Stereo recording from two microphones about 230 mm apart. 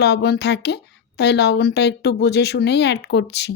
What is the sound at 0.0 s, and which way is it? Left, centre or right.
A woman's voice, left.